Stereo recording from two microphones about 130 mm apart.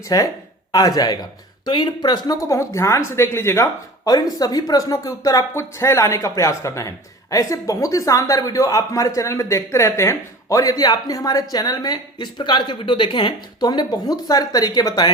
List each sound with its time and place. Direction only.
0.1 s speech: 30° left (ahead or behind)
4.1 s speech: 30° left (ahead or behind)